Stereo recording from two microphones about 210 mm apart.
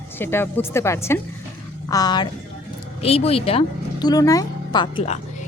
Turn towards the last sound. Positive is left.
turn(degrees=25)  # may be behind; listen again after turning